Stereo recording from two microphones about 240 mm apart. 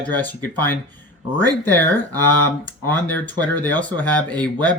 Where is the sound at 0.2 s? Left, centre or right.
Centre.